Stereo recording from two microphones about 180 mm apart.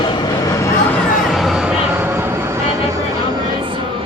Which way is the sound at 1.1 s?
Centre (ahead or behind).